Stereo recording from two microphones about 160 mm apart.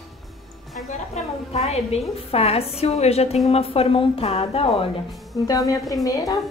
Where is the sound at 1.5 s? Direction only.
40° left (ahead or behind).